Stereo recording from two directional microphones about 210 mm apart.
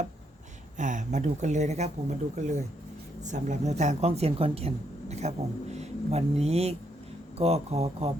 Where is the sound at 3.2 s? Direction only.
35° right (ahead or behind).